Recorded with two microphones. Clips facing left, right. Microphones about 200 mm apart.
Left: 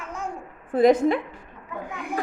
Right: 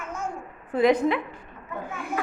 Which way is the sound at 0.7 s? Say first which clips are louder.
Left 3 dB; 50° left (ahead or behind).